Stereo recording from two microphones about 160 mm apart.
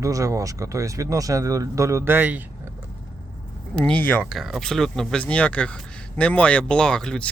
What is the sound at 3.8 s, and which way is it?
Speech, 5° left (ahead or behind).